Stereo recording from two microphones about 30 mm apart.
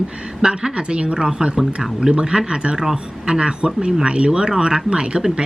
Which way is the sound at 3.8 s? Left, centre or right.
Right.